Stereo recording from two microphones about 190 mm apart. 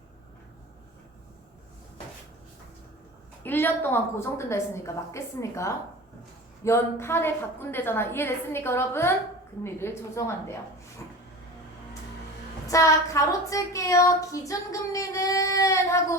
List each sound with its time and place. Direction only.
3.4 s child singing: 10° left (ahead or behind)
12.6 s child singing: 15° left (ahead or behind)